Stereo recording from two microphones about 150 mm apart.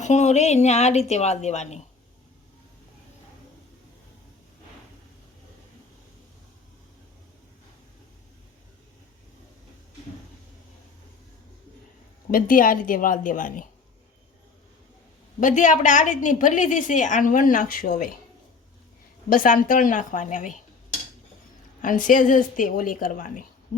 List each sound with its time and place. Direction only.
0.0 s speech: 50° left (ahead or behind)
12.3 s a woman's voice: 65° left (ahead or behind)
15.4 s a woman's voice: 60° left (ahead or behind)
19.3 s a woman's voice: 65° left (ahead or behind)
21.8 s a woman's voice: 60° left (ahead or behind)